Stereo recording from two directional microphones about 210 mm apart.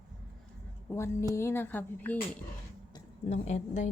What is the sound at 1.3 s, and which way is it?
Speech, 10° left (ahead or behind).